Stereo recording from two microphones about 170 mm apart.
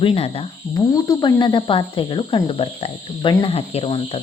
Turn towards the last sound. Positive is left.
turn(degrees=35)  # may be behind; listen again after turning